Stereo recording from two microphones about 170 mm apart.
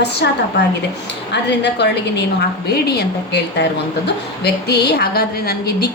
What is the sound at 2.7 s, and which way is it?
A woman's voice, 70° left (ahead or behind).